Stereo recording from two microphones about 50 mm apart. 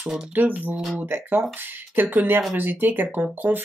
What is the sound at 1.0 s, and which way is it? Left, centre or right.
Speech, right.